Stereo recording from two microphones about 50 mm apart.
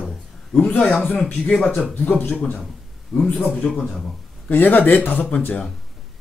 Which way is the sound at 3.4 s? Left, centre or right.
Left.